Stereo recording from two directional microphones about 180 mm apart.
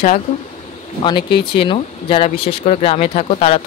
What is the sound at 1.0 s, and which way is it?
Speech, 25° left (ahead or behind).